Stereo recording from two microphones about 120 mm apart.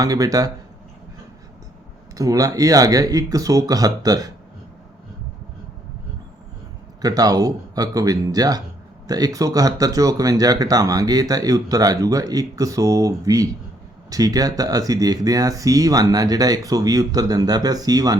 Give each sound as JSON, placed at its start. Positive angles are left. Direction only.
{"t": 0.0, "sound": "speech", "side_deg": -30}
{"t": 2.1, "sound": "speech", "side_deg": -30}
{"t": 7.0, "sound": "speech", "side_deg": -30}